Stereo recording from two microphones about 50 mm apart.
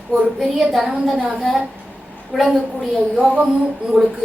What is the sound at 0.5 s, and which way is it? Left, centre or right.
A woman's voice, centre.